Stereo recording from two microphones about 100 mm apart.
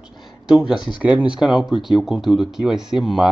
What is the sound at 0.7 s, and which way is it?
Speech, 50° left (ahead or behind).